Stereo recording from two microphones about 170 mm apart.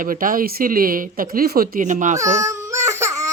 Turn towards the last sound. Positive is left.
turn(degrees=-20)  # may be behind; listen again after turning